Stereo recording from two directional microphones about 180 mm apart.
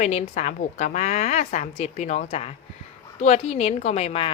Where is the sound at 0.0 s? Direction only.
40° left (ahead or behind).